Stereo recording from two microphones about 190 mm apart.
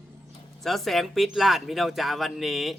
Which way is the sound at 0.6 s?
Centre (ahead or behind).